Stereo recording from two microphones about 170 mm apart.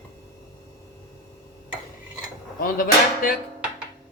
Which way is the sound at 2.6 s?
55° left (ahead or behind).